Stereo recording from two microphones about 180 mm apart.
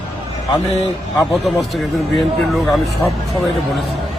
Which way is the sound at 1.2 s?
Centre (ahead or behind).